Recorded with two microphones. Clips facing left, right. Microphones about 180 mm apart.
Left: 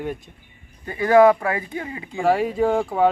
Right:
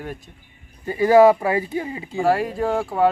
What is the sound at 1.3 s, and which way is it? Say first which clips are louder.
Speech: right 2 dB; 10° right (ahead or behind).